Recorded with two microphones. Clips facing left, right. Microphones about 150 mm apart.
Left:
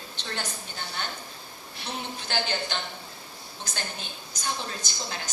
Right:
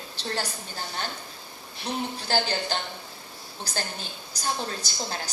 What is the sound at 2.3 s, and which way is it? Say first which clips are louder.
A woman's voice: right 3 dB; 35° right (ahead or behind).